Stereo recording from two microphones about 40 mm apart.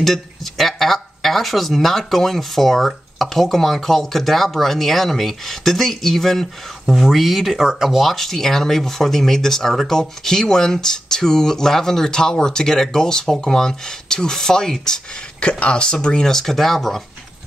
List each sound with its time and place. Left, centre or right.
0.0 s speech: centre
15.4 s speech: left; by 17.0 s centre